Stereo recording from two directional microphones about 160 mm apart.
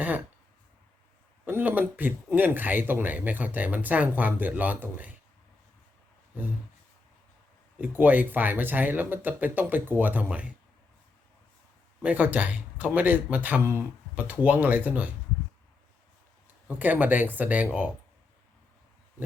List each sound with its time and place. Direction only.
1.5 s speech: 10° right (ahead or behind)
6.3 s speech: 10° right (ahead or behind)
7.8 s speech: 10° right (ahead or behind)
12.0 s speech: 10° right (ahead or behind)
16.6 s speech: 10° right (ahead or behind)